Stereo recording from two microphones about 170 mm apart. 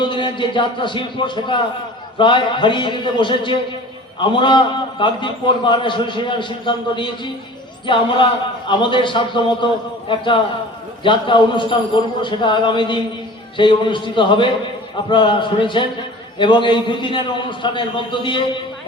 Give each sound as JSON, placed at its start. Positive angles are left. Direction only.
{"t": 0.0, "sound": "a man's voice", "side_deg": 30}